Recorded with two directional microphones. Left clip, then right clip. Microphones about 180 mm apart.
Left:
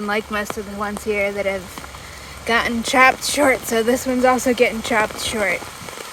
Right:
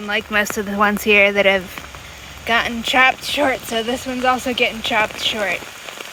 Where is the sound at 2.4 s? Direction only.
15° left (ahead or behind).